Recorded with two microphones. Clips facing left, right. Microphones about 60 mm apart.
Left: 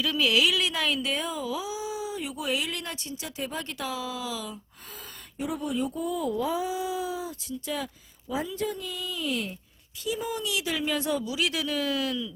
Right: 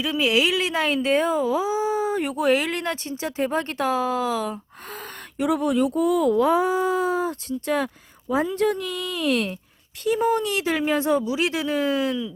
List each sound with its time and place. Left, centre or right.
0.0 s speech: right
5.4 s speech: right
10.0 s speech: right